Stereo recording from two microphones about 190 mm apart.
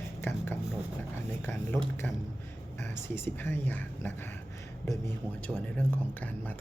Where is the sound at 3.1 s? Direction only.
10° left (ahead or behind).